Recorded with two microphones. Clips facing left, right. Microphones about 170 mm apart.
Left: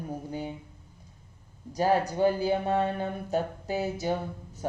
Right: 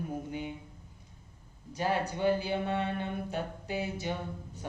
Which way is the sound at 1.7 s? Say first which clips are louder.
Left 6 dB; 40° left (ahead or behind).